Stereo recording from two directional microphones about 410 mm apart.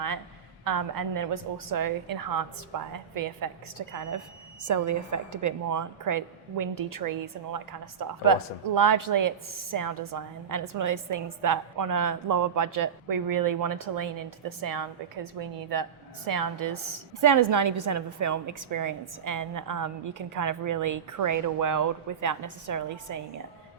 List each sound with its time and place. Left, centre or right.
0.6 s a woman's voice: right
16.3 s a woman's voice: right